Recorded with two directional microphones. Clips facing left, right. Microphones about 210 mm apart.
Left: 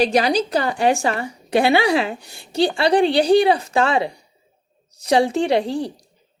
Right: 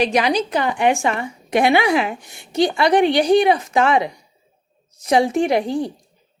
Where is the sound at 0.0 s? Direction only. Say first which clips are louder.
Left 1 dB; 35° left (ahead or behind).